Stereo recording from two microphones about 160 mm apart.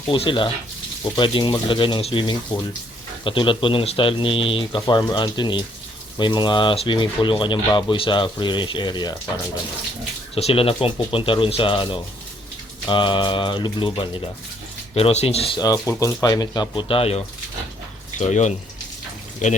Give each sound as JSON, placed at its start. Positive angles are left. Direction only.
{"t": 0.1, "sound": "speech", "side_deg": 30}
{"t": 10.3, "sound": "speech", "side_deg": 35}
{"t": 15.6, "sound": "speech", "side_deg": 20}